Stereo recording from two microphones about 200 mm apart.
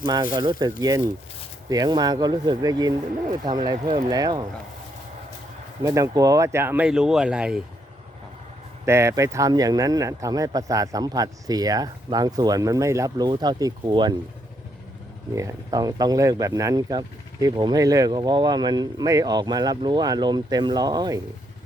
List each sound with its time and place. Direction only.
0.0 s speech: 20° right (ahead or behind)
5.8 s speech: 15° right (ahead or behind)
8.9 s speech: 15° right (ahead or behind)
15.4 s speech: 15° right (ahead or behind)